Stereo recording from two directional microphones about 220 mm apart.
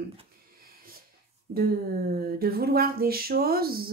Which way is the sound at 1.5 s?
40° right (ahead or behind).